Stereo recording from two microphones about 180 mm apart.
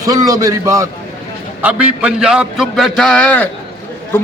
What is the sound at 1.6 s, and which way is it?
A man's voice, 5° right (ahead or behind).